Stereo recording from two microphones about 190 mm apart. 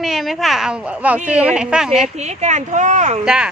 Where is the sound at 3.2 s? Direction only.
5° right (ahead or behind).